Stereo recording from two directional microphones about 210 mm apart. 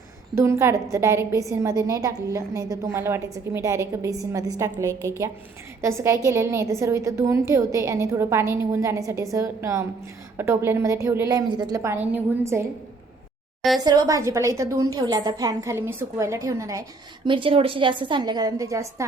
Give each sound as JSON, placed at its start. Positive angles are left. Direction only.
{"t": 0.3, "sound": "a woman's voice", "side_deg": -15}
{"t": 13.6, "sound": "a woman's voice", "side_deg": 0}
{"t": 13.8, "sound": "a woman's voice", "side_deg": -20}